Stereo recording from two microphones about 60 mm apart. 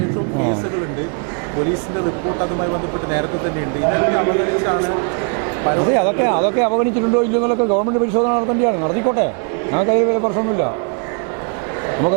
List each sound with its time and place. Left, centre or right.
2.4 s a man's voice: right
3.8 s a man's voice: right
11.9 s a sound: right